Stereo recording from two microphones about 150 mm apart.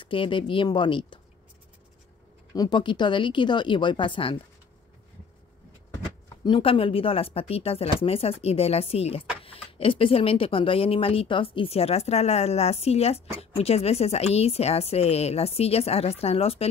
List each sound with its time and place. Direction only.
0.0 s speech: 35° left (ahead or behind)
2.5 s speech: 25° left (ahead or behind)
6.4 s speech: 35° left (ahead or behind)